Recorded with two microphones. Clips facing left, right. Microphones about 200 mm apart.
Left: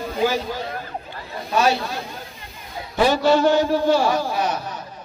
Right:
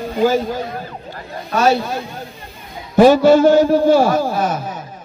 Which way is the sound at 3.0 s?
50° right (ahead or behind).